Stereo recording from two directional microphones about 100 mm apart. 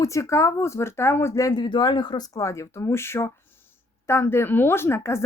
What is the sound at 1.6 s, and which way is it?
Speech, 50° left (ahead or behind).